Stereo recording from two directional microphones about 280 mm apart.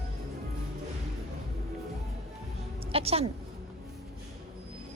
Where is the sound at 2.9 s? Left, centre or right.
Right.